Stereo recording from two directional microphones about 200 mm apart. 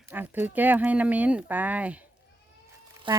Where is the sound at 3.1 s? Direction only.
25° right (ahead or behind).